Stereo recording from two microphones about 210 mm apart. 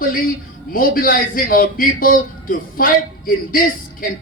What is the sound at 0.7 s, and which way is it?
A man's voice, 45° left (ahead or behind).